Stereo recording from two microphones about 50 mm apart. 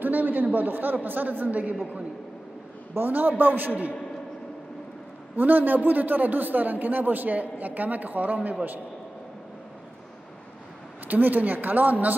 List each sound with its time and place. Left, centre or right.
0.0 s a man's voice: right
3.0 s a man's voice: right
5.3 s a man's voice: right
11.1 s a man's voice: right